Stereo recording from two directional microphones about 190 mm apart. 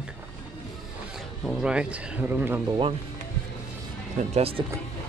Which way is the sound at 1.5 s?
5° right (ahead or behind).